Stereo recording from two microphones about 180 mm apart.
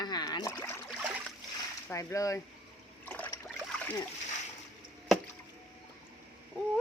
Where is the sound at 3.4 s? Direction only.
10° left (ahead or behind).